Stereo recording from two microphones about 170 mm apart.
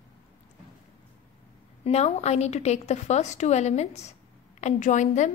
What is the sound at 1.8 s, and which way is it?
A woman's voice, 40° left (ahead or behind).